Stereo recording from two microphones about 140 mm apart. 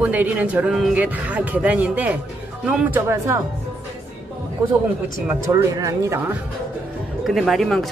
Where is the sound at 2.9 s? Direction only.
20° right (ahead or behind).